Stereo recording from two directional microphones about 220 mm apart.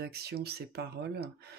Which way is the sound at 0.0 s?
45° right (ahead or behind).